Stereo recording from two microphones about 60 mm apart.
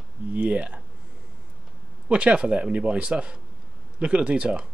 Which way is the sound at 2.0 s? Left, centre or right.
Centre.